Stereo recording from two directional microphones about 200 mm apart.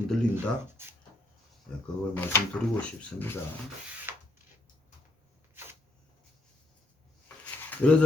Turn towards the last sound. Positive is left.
turn(degrees=5)  # may be behind; listen again after turning